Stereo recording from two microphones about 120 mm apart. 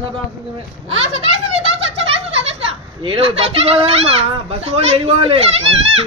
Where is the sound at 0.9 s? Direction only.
55° right (ahead or behind).